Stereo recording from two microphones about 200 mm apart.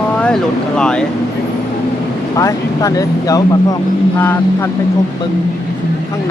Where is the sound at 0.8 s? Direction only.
5° left (ahead or behind).